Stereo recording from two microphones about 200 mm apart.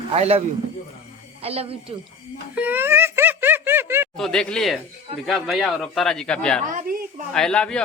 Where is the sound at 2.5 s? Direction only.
10° right (ahead or behind).